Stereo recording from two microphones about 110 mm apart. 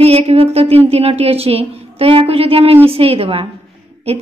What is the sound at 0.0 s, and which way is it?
Speech, 70° right (ahead or behind).